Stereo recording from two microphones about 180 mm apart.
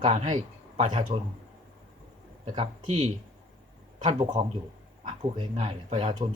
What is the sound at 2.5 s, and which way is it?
A man's voice, 30° right (ahead or behind).